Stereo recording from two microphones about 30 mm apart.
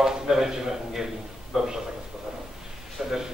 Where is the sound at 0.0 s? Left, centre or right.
Centre.